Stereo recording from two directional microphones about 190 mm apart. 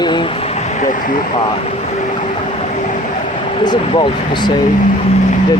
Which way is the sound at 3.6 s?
25° left (ahead or behind).